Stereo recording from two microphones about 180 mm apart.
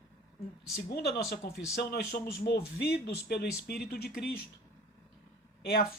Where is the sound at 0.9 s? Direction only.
60° left (ahead or behind).